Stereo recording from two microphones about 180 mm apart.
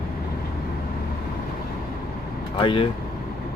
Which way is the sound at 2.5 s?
30° left (ahead or behind).